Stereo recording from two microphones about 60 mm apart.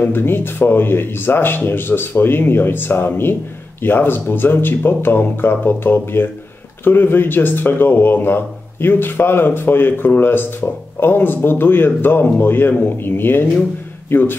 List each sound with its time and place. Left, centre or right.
0.0 s speech: left